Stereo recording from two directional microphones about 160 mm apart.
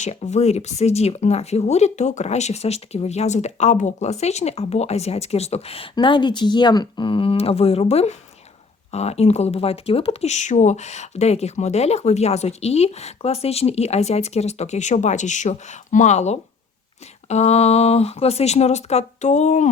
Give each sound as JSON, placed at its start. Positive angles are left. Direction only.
{"t": 0.0, "sound": "speech", "side_deg": 45}